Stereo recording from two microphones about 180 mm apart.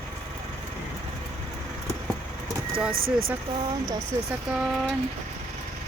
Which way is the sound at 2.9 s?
55° right (ahead or behind).